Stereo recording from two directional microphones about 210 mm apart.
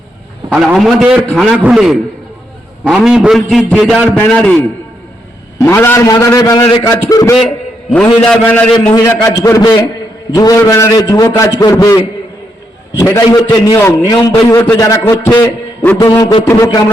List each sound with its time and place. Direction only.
0.5 s a man's voice: centre (ahead or behind)
5.5 s a man's voice: 10° left (ahead or behind)
7.3 s a sound: centre (ahead or behind)
8.0 s a man's voice: 5° left (ahead or behind)